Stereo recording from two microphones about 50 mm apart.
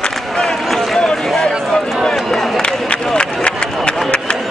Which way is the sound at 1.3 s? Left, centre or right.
Centre.